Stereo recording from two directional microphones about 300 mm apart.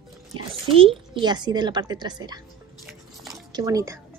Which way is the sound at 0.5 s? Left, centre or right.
Centre.